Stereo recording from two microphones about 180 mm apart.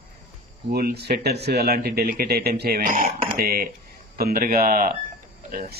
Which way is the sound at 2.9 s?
45° right (ahead or behind).